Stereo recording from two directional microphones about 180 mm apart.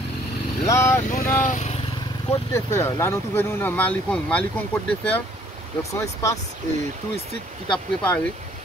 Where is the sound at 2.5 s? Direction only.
15° left (ahead or behind).